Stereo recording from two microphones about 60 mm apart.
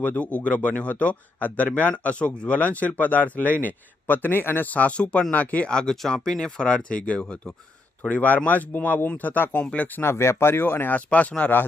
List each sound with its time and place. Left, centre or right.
0.0 s a man's voice: left
5.7 s a man's voice: centre; by 10.0 s left
10.0 s speech: left